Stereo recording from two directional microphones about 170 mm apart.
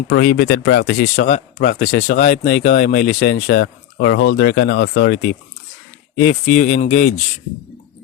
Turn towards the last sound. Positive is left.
turn(degrees=45)  # may be behind; listen again after turning